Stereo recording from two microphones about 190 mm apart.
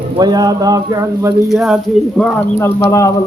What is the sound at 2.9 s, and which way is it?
Speech, 15° left (ahead or behind).